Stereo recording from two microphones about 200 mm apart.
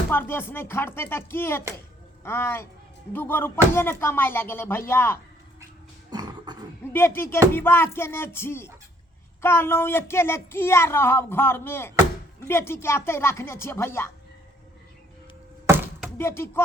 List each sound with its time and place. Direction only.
0.1 s speech: 10° left (ahead or behind)
6.1 s a sound: 20° right (ahead or behind)
6.9 s speech: 10° left (ahead or behind)
16.1 s speech: 10° left (ahead or behind)